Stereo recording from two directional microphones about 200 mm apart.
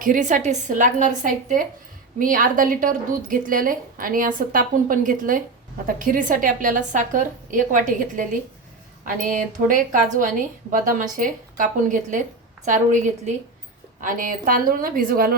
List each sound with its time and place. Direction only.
0.0 s a woman's voice: 40° right (ahead or behind)